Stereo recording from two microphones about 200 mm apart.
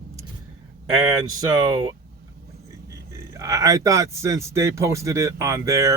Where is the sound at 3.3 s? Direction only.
15° right (ahead or behind).